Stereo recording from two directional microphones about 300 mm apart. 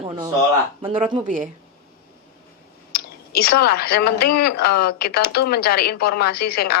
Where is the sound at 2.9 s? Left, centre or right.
Left.